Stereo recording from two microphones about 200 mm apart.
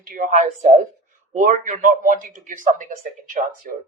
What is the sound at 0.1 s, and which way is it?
Speech, 40° right (ahead or behind).